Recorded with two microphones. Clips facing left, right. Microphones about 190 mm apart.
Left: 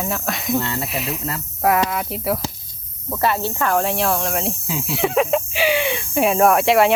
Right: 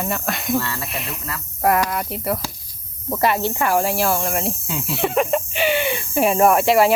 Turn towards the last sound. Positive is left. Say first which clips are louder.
# even
turn(degrees=0)  # may be behind; listen again after turning